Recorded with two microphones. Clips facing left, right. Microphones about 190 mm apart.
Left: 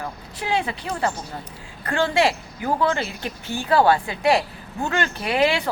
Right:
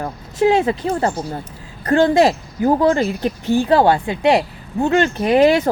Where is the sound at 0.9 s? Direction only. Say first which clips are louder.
Right 6 dB; 35° right (ahead or behind).